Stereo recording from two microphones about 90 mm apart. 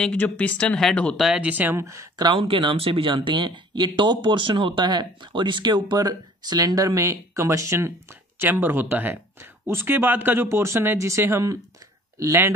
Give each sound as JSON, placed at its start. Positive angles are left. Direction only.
{"t": 0.1, "sound": "speech", "side_deg": 15}
{"t": 1.1, "sound": "speech", "side_deg": -5}
{"t": 1.5, "sound": "speech", "side_deg": -20}
{"t": 2.1, "sound": "speech", "side_deg": -55}
{"t": 2.4, "sound": "speech", "side_deg": -80}